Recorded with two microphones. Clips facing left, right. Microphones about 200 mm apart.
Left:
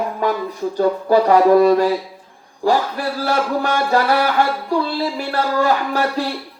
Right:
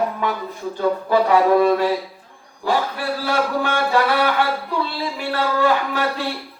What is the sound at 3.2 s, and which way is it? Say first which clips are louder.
Music: left 2 dB; 40° left (ahead or behind).